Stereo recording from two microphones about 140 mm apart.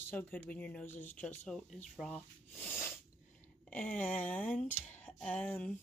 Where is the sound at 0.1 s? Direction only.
10° left (ahead or behind).